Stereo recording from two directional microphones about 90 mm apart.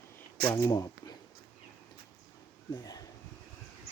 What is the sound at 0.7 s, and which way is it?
Speech, 40° left (ahead or behind).